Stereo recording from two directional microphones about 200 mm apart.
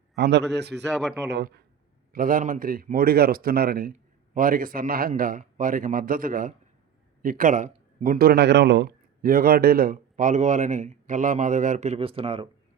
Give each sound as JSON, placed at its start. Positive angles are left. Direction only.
{"t": 0.2, "sound": "a man's voice", "side_deg": -60}
{"t": 2.1, "sound": "a man's voice", "side_deg": -45}
{"t": 9.2, "sound": "a man's voice", "side_deg": -45}